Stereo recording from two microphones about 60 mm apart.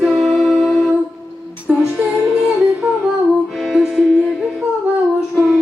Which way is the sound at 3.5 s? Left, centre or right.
Centre.